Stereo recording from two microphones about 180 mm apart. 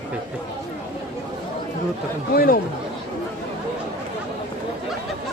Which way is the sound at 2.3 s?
55° left (ahead or behind).